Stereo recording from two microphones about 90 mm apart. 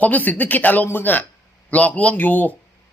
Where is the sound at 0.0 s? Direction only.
20° left (ahead or behind).